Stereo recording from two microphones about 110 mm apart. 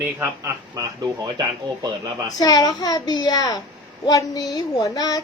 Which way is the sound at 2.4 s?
35° left (ahead or behind).